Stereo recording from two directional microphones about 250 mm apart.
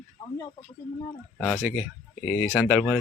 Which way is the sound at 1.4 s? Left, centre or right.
Centre.